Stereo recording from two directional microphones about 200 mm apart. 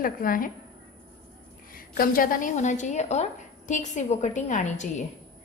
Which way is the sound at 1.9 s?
45° left (ahead or behind).